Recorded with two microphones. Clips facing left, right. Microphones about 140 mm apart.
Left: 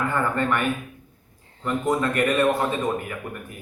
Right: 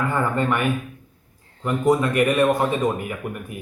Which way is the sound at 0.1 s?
15° right (ahead or behind).